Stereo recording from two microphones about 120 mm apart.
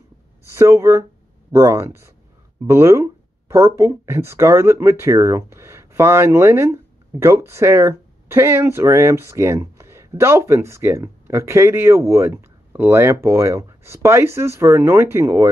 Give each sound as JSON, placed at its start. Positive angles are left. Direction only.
{"t": 0.5, "sound": "speech", "side_deg": -25}